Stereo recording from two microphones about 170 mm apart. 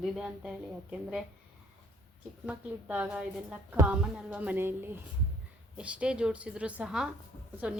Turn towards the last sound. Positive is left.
turn(degrees=-5)  # may be behind; listen again after turning